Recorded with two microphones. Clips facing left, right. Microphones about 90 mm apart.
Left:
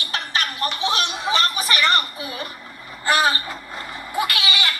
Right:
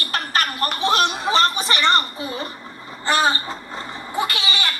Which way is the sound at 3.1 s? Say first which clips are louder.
Even; 30° right (ahead or behind).